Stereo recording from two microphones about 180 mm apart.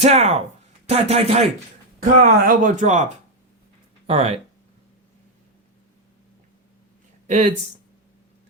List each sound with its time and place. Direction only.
0.0 s a man's voice: 35° right (ahead or behind)
7.3 s speech: 40° right (ahead or behind)